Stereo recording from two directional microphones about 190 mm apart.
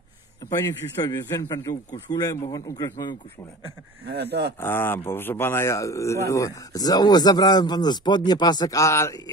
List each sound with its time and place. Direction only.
0.5 s a man's voice: 20° left (ahead or behind)
4.0 s speech: 60° right (ahead or behind)
4.6 s a man's voice: 10° left (ahead or behind)